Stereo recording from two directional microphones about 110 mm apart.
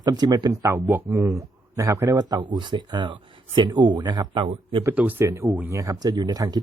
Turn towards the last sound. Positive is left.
turn(degrees=-35)  # may be behind; listen again after turning